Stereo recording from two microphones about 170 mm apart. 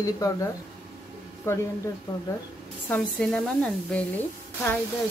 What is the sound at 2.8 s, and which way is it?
A woman's voice, 5° left (ahead or behind).